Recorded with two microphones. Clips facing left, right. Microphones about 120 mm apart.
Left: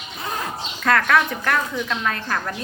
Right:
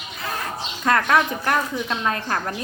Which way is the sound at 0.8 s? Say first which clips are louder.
Even; 20° right (ahead or behind).